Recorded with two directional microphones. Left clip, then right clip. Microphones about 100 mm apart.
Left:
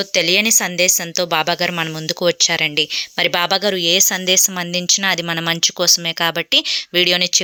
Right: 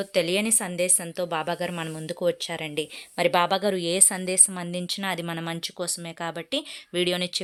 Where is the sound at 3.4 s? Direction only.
10° left (ahead or behind).